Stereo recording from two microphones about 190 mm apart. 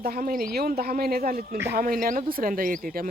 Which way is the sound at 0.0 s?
50° right (ahead or behind).